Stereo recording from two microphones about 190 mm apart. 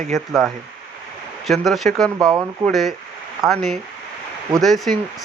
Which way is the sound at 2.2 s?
20° right (ahead or behind).